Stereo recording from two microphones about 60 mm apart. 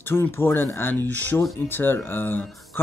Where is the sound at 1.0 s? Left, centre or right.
Left.